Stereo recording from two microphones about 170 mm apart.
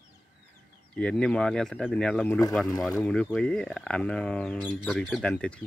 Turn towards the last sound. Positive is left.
turn(degrees=5)  # may be behind; listen again after turning